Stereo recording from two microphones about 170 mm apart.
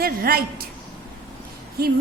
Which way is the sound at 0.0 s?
65° right (ahead or behind).